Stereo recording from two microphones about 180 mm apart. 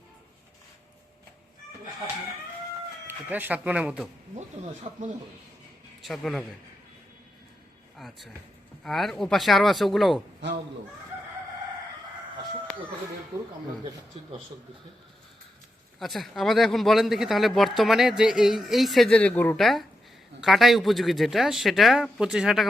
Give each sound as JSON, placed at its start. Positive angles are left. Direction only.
{"t": 3.1, "sound": "speech", "side_deg": -10}
{"t": 4.4, "sound": "speech", "side_deg": -40}
{"t": 6.0, "sound": "a man's voice", "side_deg": 0}
{"t": 7.9, "sound": "speech", "side_deg": 0}
{"t": 16.0, "sound": "speech", "side_deg": 0}